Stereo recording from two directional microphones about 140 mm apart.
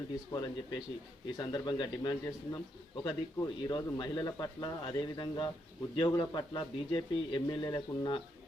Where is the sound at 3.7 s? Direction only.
30° left (ahead or behind).